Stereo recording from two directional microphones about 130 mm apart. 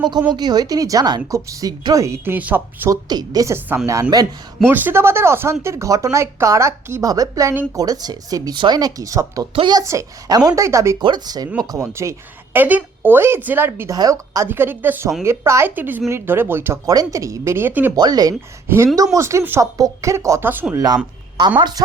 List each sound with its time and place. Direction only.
0.3 s speech: 30° right (ahead or behind); by 2.9 s 15° right (ahead or behind)
2.9 s speech: 30° right (ahead or behind)
4.6 s speech: 15° right (ahead or behind); by 9.8 s 35° right (ahead or behind)
9.8 s speech: 25° right (ahead or behind)
12.5 s speech: 15° right (ahead or behind)
17.9 s speech: 30° right (ahead or behind); by 20.8 s 15° right (ahead or behind)
21.3 s speech: 35° right (ahead or behind)